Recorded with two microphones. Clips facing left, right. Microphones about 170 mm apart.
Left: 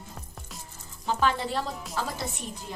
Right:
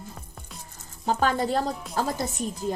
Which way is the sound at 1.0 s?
45° right (ahead or behind).